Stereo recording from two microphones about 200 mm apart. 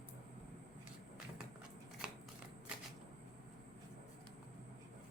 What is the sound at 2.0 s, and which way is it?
Shuffling cards, 5° right (ahead or behind).